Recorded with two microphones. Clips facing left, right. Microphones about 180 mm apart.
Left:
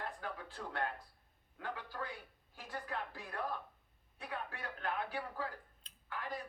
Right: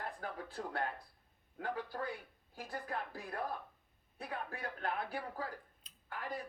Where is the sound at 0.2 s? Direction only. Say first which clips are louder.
Right 2 dB; 40° right (ahead or behind).